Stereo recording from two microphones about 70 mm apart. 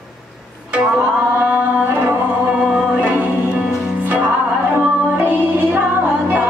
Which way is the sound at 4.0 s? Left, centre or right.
Centre.